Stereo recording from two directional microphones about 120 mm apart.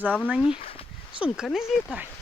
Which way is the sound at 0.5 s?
50° left (ahead or behind).